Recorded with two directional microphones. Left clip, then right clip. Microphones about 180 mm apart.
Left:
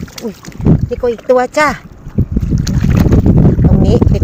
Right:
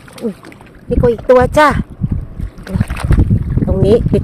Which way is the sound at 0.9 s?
20° right (ahead or behind).